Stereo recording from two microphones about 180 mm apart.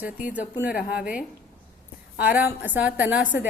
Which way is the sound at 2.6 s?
10° right (ahead or behind).